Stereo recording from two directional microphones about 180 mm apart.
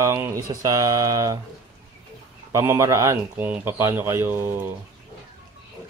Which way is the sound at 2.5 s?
15° right (ahead or behind).